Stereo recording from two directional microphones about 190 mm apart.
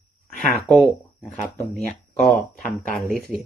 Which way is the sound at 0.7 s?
5° left (ahead or behind).